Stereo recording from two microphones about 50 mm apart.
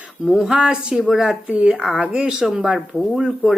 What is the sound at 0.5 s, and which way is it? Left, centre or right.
Speech, centre.